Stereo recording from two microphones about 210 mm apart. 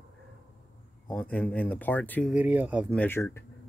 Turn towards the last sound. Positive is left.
turn(degrees=10)  # may be behind; listen again after turning